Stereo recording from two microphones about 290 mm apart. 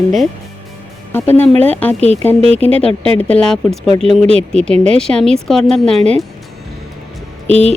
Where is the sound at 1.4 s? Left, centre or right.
Right.